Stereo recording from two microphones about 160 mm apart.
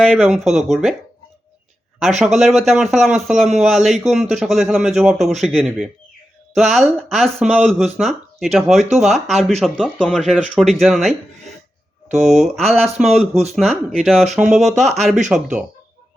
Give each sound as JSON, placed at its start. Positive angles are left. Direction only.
{"t": 0.1, "sound": "a man's voice", "side_deg": 0}
{"t": 2.0, "sound": "a man's voice", "side_deg": 0}
{"t": 12.2, "sound": "a man's voice", "side_deg": 0}
{"t": 13.3, "sound": "speech", "side_deg": -40}
{"t": 13.6, "sound": "a man's voice", "side_deg": 0}
{"t": 14.6, "sound": "speech", "side_deg": -45}
{"t": 15.3, "sound": "a man's voice", "side_deg": -5}